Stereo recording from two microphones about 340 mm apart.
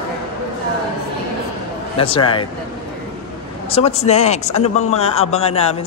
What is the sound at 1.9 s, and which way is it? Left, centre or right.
Speech, centre.